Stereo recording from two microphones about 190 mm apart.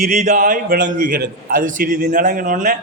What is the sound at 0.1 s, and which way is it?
A man's voice, 40° right (ahead or behind).